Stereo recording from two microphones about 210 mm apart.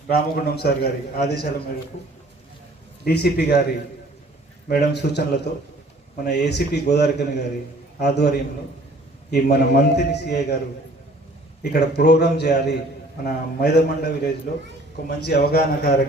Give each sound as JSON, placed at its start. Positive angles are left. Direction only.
{"t": 0.1, "sound": "a man's voice", "side_deg": 50}
{"t": 3.0, "sound": "a man's voice", "side_deg": 50}
{"t": 4.7, "sound": "a man's voice", "side_deg": 50}
{"t": 11.6, "sound": "a man's voice", "side_deg": 50}